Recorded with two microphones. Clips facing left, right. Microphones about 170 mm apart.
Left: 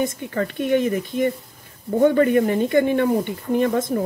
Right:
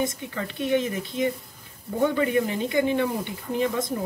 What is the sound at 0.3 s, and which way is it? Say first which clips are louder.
Speech: left 5 dB; 50° left (ahead or behind).